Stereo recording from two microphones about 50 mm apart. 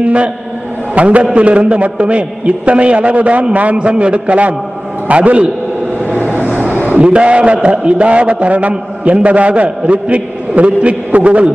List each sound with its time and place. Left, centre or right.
0.0 s a man's voice: right
6.0 s vehicle: left
6.5 s a sound: right
6.9 s a man's voice: right